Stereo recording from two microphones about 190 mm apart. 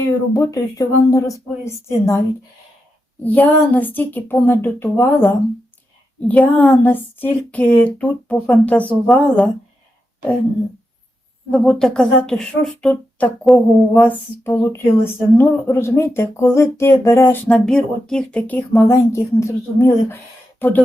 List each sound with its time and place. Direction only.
0.3 s speech: 20° left (ahead or behind)
3.2 s speech: 10° left (ahead or behind)
6.1 s speech: 5° left (ahead or behind)
11.5 s speech: 5° left (ahead or behind)